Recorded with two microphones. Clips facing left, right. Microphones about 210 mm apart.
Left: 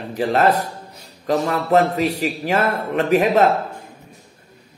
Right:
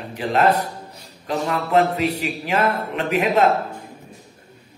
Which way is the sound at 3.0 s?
40° left (ahead or behind).